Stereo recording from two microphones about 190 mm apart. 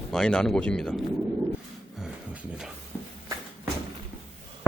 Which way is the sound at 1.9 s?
Centre (ahead or behind).